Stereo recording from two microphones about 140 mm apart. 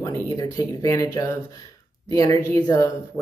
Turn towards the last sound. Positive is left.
turn(degrees=30)  # may be behind; listen again after turning